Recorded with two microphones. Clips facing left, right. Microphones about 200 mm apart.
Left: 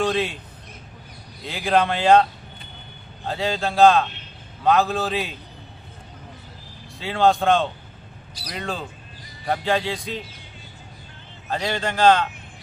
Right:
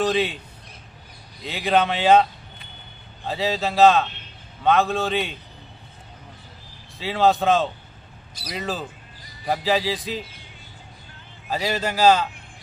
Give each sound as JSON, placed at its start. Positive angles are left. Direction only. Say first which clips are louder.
{"t": 0.0, "sound": "a man's voice", "louder": "right 1 dB", "side_deg": 0}
{"t": 1.4, "sound": "a man's voice", "louder": "even", "side_deg": 0}
{"t": 3.2, "sound": "a man's voice", "louder": "even", "side_deg": 0}
{"t": 7.0, "sound": "a man's voice", "louder": "even", "side_deg": 0}
{"t": 11.5, "sound": "a man's voice", "louder": "even", "side_deg": -5}